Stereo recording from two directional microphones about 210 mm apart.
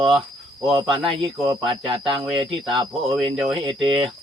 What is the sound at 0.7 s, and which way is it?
Speech, 25° right (ahead or behind).